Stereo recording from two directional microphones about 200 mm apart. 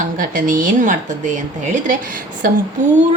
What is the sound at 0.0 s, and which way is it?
A woman's voice, 40° right (ahead or behind).